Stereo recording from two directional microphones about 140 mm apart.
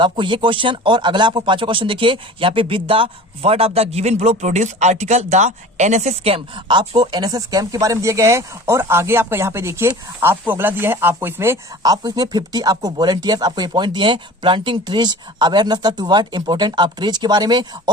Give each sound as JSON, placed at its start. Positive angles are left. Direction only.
{"t": 0.0, "sound": "speech", "side_deg": -35}